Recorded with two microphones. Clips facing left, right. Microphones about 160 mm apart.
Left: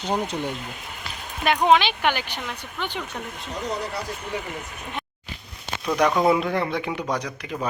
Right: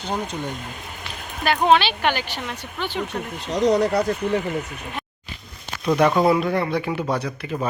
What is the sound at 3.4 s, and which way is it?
Speech, 85° right.